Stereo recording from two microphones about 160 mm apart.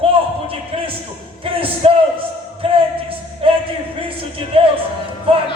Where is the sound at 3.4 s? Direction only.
35° right (ahead or behind).